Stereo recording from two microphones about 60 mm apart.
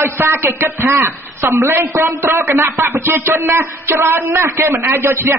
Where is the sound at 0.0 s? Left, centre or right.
Right.